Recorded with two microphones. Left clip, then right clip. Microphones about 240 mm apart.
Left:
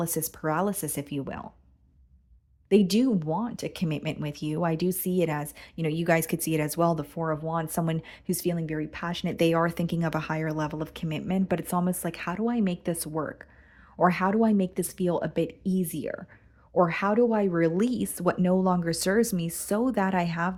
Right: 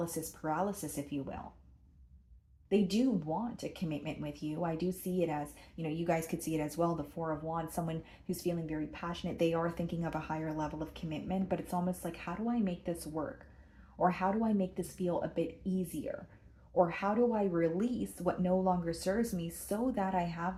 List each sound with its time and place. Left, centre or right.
0.0 s speech: left
2.6 s speech: left